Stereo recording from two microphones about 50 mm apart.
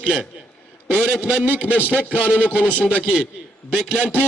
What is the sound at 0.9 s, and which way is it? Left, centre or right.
Speech, centre.